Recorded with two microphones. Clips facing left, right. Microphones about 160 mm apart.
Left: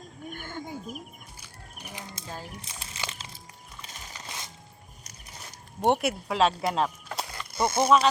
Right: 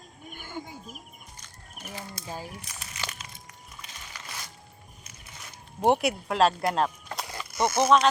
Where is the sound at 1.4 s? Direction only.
15° left (ahead or behind).